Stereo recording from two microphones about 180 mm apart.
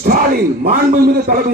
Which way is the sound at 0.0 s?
55° right (ahead or behind).